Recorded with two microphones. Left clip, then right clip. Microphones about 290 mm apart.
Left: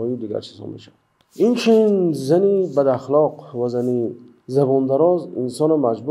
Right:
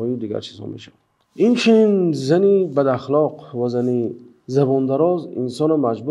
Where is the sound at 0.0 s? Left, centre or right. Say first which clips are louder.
Even; right.